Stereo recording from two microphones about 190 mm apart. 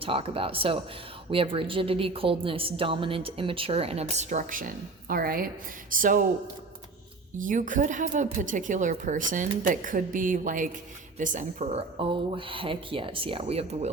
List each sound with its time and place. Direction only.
0.0 s a woman's voice: 30° right (ahead or behind); by 6.2 s 45° right (ahead or behind)
7.3 s a woman's voice: 45° right (ahead or behind)